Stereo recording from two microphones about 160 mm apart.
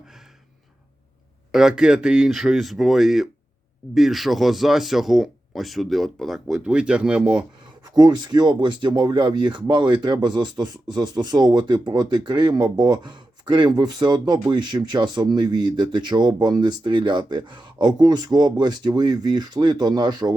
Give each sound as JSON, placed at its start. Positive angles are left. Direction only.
{"t": 1.5, "sound": "speech", "side_deg": -5}
{"t": 7.9, "sound": "speech", "side_deg": -25}